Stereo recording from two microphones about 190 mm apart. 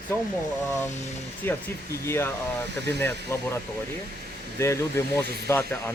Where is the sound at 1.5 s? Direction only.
10° left (ahead or behind).